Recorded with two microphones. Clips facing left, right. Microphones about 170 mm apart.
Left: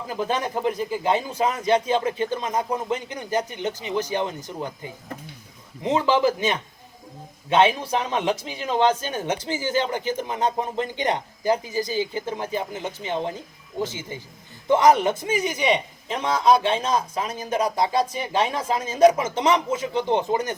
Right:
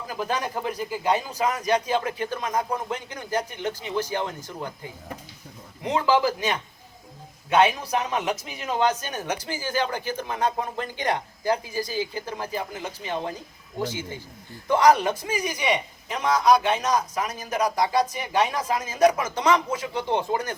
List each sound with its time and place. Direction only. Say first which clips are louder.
0.1 s a man's voice: left 3 dB; 25° left (ahead or behind)
5.8 s a man's voice: left 2 dB; 25° left (ahead or behind)